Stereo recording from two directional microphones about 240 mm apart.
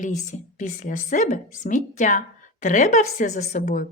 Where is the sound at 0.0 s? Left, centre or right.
Left.